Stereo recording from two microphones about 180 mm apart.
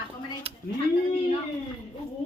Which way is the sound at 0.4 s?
30° right (ahead or behind).